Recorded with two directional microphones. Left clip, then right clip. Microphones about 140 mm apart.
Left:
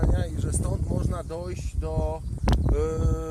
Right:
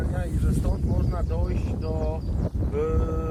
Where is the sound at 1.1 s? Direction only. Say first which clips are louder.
Right 1 dB; 25° left (ahead or behind).